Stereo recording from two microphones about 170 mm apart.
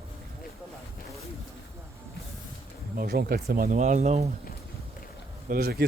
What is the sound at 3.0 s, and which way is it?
Speech, 65° right (ahead or behind).